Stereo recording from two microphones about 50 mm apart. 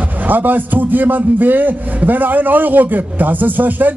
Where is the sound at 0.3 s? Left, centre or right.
Right.